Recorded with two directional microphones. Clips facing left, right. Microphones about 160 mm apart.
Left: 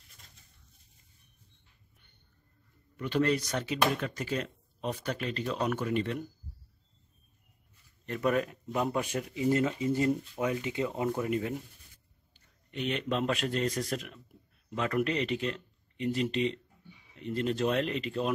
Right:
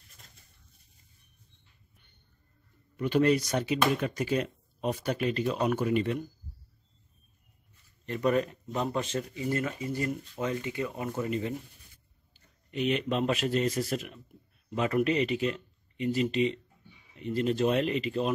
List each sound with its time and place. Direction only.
3.0 s speech: 15° right (ahead or behind)
8.0 s speech: centre (ahead or behind); by 11.2 s 20° left (ahead or behind)
11.2 s speech: 5° left (ahead or behind)
12.7 s speech: 5° right (ahead or behind)